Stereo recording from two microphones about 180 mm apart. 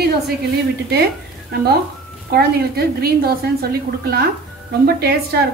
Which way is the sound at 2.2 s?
60° right (ahead or behind).